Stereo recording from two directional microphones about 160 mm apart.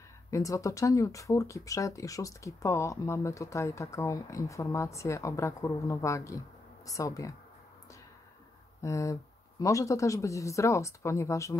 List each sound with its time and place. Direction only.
0.3 s speech: 20° left (ahead or behind)
8.8 s speech: 20° left (ahead or behind)